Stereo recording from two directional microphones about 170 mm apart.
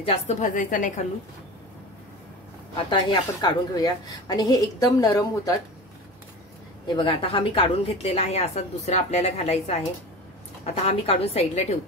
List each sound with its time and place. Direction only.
0.0 s a woman's voice: 40° left (ahead or behind)
2.9 s a woman's voice: 25° left (ahead or behind)
7.0 s a woman's voice: 30° left (ahead or behind)